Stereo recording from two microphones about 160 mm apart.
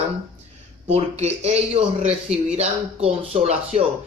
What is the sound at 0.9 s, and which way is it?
Speech, 40° right (ahead or behind).